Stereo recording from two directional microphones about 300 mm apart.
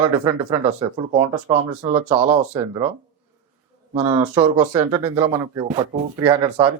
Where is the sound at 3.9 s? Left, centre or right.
Centre.